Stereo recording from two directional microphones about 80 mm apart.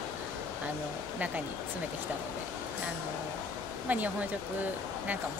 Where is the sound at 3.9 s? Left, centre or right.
Centre.